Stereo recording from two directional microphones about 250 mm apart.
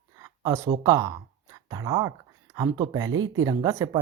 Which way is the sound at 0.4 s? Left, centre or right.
Centre.